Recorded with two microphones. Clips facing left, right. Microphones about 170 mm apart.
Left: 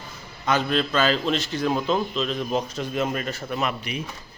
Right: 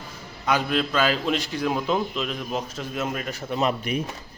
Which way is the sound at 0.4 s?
10° right (ahead or behind).